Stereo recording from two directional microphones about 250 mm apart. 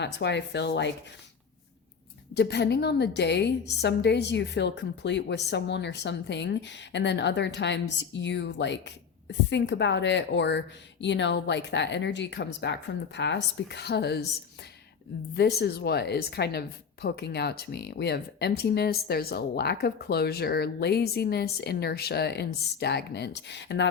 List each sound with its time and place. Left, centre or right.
0.0 s a woman's voice: left
2.3 s a woman's voice: left
15.4 s a woman's voice: left